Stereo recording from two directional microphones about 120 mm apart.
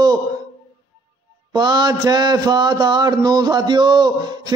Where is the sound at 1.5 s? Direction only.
35° right (ahead or behind).